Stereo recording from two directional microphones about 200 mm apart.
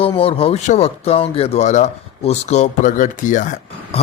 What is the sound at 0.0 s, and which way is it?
A man's voice, 30° left (ahead or behind).